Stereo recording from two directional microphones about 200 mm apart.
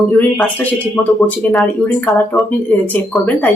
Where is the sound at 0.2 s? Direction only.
5° left (ahead or behind).